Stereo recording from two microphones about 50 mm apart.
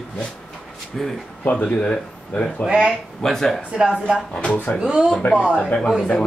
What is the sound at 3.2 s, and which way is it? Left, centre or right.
Speech, centre.